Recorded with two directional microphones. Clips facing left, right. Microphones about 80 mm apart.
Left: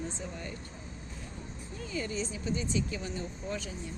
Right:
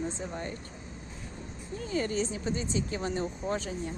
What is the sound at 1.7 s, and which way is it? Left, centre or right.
Speech, right.